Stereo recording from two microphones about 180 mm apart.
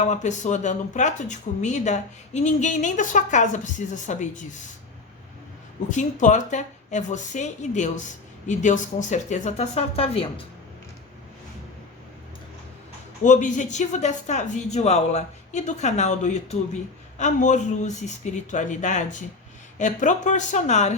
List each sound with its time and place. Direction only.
0.0 s speech: 40° left (ahead or behind)
5.9 s speech: 45° left (ahead or behind)
13.2 s speech: 45° left (ahead or behind)